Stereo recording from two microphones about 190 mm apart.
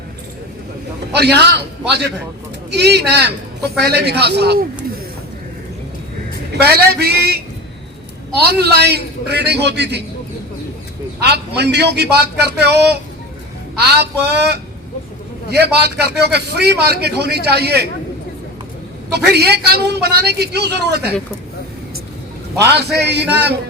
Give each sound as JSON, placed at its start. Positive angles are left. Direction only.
{"t": 1.1, "sound": "a man's voice", "side_deg": -60}
{"t": 6.6, "sound": "a man's voice", "side_deg": -55}
{"t": 8.4, "sound": "a man's voice", "side_deg": -55}
{"t": 11.2, "sound": "a man's voice", "side_deg": -60}
{"t": 19.1, "sound": "a man's voice", "side_deg": -60}
{"t": 22.5, "sound": "a man's voice", "side_deg": -60}